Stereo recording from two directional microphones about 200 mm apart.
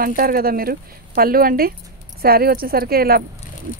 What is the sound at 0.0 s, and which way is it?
Speech, 45° right (ahead or behind).